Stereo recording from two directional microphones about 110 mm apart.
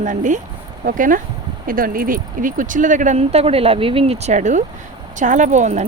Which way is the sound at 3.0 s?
75° right (ahead or behind).